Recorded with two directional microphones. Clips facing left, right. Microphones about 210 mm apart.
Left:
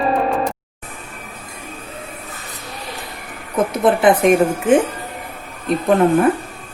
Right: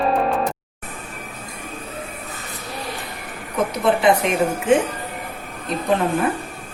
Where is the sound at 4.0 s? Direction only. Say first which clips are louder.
Left 7 dB; 50° left (ahead or behind).